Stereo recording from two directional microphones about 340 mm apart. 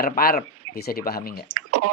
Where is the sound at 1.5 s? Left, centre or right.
Right.